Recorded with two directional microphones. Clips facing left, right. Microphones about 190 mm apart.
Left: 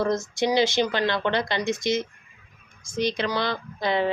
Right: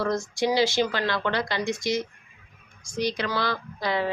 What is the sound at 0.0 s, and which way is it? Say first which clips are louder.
A woman's voice: left 1 dB; 20° left (ahead or behind).